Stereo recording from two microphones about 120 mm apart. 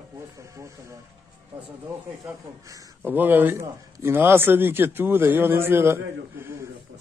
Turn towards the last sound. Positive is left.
turn(degrees=-20)  # may be behind; listen again after turning